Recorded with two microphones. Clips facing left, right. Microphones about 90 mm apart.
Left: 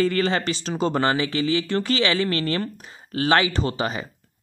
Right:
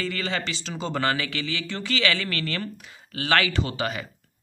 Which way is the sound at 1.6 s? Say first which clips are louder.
Left 8 dB; 50° left (ahead or behind).